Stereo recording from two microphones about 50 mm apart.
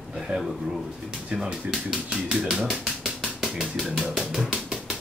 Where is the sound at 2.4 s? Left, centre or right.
Right.